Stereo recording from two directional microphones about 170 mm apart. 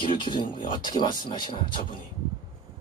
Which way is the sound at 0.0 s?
30° left (ahead or behind).